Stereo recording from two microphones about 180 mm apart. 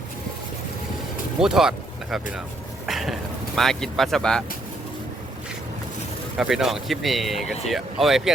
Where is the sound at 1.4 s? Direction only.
5° right (ahead or behind).